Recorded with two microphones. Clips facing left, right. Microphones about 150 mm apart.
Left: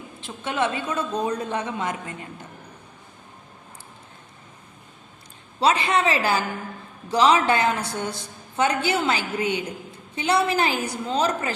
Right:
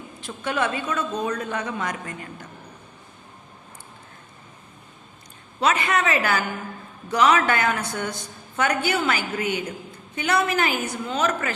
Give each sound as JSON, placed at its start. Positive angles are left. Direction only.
{"t": 0.2, "sound": "a woman's voice", "side_deg": 25}
{"t": 5.5, "sound": "a woman's voice", "side_deg": 30}